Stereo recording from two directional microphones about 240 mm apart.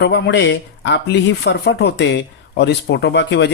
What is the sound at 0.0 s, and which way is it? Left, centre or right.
Speech, left.